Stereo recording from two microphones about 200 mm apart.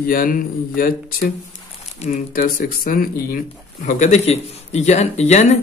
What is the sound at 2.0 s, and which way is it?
Speech, 45° left (ahead or behind).